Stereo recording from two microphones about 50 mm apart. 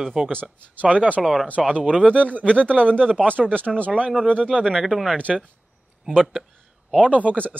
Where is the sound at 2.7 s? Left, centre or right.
Left.